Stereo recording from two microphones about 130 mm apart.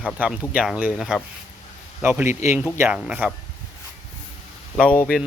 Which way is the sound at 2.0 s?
20° right (ahead or behind).